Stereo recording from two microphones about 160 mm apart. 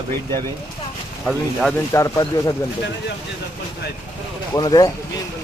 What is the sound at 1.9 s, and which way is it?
Speech, 20° left (ahead or behind).